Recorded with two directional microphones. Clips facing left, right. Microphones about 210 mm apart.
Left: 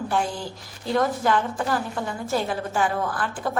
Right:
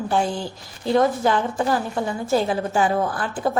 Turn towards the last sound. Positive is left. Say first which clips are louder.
# right 4 dB
turn(degrees=-25)  # may be behind; listen again after turning